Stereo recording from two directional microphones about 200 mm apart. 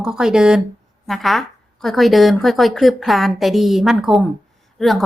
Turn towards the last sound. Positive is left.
turn(degrees=0)  # may be behind; listen again after turning